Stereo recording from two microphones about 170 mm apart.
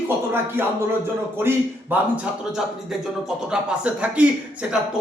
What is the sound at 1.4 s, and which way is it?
A man's voice, 10° right (ahead or behind).